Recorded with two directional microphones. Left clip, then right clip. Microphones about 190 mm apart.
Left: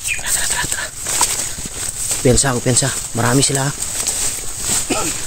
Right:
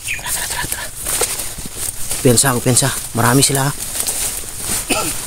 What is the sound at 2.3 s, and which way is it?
Speech, 10° right (ahead or behind).